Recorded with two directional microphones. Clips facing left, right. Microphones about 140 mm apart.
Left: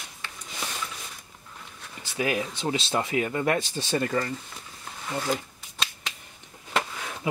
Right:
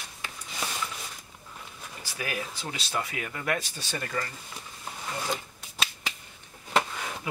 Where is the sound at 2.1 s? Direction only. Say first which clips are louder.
Left 7 dB; 25° left (ahead or behind).